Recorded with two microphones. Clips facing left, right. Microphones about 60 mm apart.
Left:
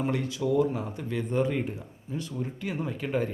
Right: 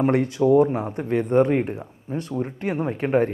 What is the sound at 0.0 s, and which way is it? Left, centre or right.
Speech, right.